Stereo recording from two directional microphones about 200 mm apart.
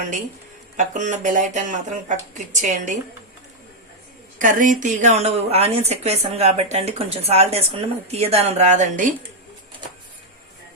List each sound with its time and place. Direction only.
0.8 s a woman's voice: 40° right (ahead or behind)
4.4 s a woman's voice: 40° right (ahead or behind)